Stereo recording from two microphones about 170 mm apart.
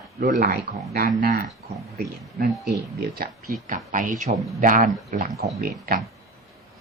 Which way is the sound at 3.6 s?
50° right (ahead or behind).